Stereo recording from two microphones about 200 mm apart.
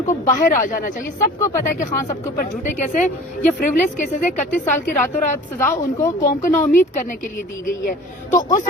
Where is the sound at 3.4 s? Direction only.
40° left (ahead or behind).